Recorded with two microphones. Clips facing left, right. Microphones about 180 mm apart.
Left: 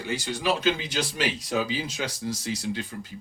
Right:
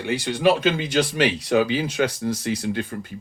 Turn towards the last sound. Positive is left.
turn(degrees=-55)  # may be behind; listen again after turning